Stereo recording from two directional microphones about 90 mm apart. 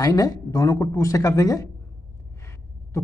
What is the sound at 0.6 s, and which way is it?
Speech, 35° left (ahead or behind).